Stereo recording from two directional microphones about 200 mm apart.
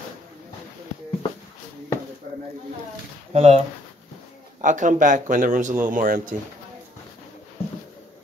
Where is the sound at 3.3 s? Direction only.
30° right (ahead or behind).